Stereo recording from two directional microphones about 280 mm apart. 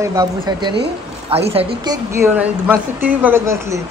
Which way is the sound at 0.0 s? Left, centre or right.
Centre.